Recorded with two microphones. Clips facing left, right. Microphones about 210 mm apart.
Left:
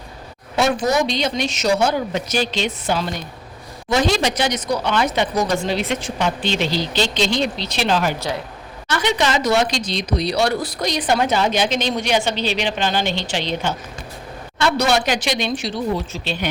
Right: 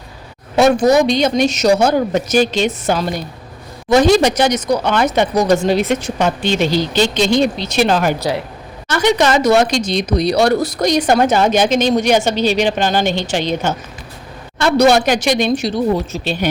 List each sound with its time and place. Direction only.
0.5 s speech: 45° right (ahead or behind)